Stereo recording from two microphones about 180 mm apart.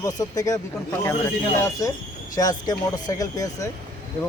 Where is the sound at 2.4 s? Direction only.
20° left (ahead or behind).